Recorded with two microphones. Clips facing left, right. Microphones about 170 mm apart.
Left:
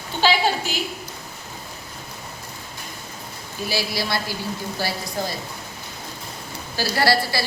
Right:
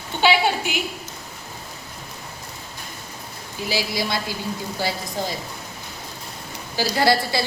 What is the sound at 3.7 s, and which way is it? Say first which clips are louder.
Speech: right 1 dB; 15° right (ahead or behind).